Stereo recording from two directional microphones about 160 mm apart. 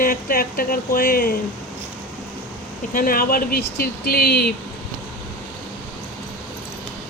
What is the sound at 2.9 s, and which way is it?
Speech, 65° left (ahead or behind).